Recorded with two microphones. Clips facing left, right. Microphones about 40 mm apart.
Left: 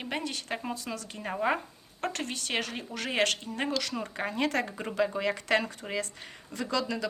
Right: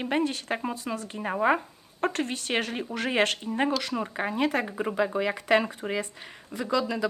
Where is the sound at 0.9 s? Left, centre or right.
Right.